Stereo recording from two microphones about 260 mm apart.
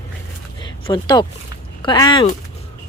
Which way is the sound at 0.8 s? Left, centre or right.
Centre.